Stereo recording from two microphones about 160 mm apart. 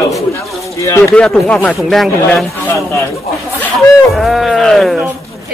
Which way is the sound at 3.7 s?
Centre (ahead or behind).